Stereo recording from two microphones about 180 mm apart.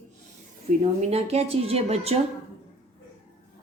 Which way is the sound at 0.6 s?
35° right (ahead or behind).